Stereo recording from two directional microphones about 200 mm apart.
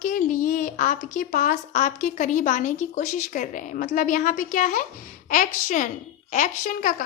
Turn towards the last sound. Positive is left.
turn(degrees=40)  # may be behind; listen again after turning